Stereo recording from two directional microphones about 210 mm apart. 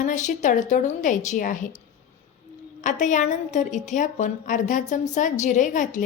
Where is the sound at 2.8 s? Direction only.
35° left (ahead or behind).